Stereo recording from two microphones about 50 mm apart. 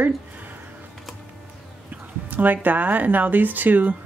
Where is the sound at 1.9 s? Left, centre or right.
Right.